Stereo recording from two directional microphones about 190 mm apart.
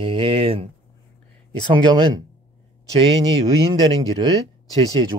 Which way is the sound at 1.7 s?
25° right (ahead or behind).